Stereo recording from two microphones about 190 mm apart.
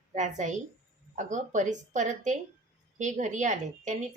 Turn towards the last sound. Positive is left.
turn(degrees=-40)  # may be behind; listen again after turning